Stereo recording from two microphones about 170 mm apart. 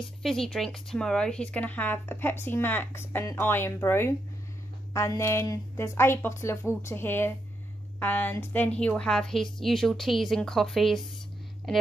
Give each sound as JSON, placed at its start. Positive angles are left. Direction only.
{"t": 0.0, "sound": "a woman's voice", "side_deg": 0}